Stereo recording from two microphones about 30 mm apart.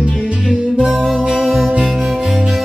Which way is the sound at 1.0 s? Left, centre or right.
Centre.